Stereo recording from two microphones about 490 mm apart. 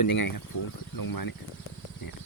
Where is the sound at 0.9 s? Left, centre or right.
Left.